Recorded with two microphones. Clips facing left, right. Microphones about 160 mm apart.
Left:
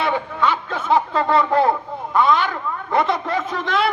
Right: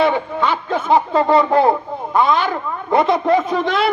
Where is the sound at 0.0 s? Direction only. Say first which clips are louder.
Right 4 dB; 20° right (ahead or behind).